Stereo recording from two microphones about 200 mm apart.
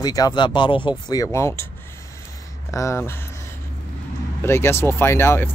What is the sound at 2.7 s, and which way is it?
Speech, 15° left (ahead or behind).